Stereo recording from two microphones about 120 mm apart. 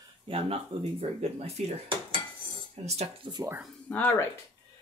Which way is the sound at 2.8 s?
65° right (ahead or behind).